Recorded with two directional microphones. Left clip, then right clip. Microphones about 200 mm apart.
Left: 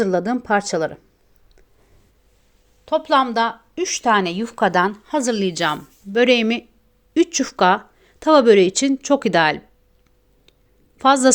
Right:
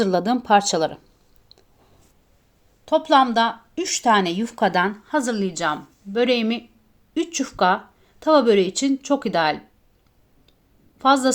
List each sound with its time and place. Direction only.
0.0 s speech: 10° left (ahead or behind)
2.8 s speech: 15° left (ahead or behind); by 9.6 s 35° left (ahead or behind)
10.9 s a woman's voice: 35° left (ahead or behind)